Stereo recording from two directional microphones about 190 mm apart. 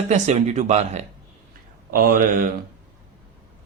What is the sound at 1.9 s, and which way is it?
Speech, 50° right (ahead or behind).